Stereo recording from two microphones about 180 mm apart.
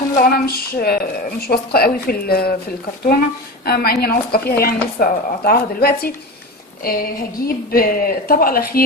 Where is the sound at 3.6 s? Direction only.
60° left (ahead or behind).